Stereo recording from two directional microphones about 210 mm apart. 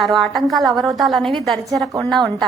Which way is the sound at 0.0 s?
Centre (ahead or behind).